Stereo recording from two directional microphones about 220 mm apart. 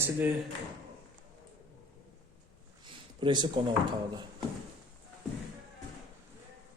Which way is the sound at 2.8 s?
20° right (ahead or behind).